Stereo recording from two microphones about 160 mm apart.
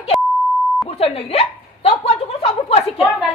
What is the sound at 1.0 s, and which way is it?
Hiccup, 40° left (ahead or behind).